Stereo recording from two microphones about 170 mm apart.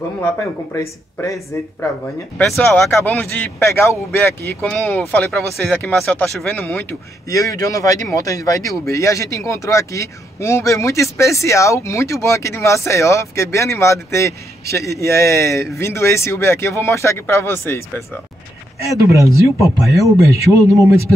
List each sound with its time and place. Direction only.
0.7 s a man's voice: 15° left (ahead or behind)
2.3 s a man's voice: centre (ahead or behind)
4.6 s a man's voice: centre (ahead or behind)
7.2 s a man's voice: 20° left (ahead or behind)
18.9 s speech: 20° right (ahead or behind)